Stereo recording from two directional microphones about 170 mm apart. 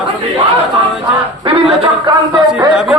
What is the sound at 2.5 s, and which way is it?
Speech, 5° right (ahead or behind).